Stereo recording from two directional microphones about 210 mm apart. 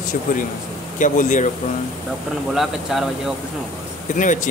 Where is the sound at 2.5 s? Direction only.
Centre (ahead or behind).